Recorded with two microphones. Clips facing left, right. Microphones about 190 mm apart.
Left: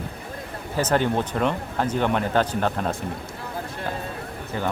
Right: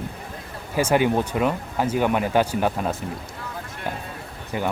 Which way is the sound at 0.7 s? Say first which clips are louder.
Right 2 dB; 10° right (ahead or behind).